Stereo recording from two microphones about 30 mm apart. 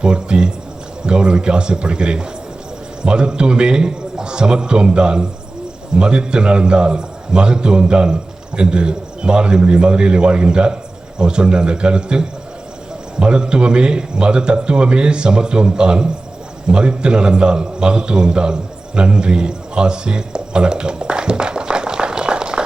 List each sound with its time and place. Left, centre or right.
0.0 s a man's voice: right